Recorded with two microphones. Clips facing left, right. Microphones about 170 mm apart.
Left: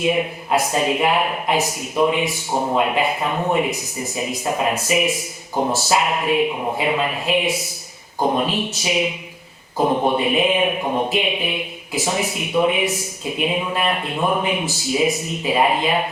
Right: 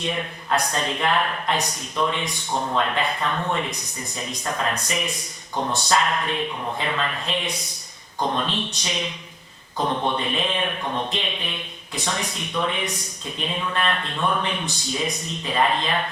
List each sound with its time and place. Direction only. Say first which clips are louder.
0.0 s speech: left 8 dB; 10° left (ahead or behind)